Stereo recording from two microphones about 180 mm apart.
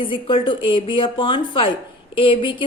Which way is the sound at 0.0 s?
30° left (ahead or behind).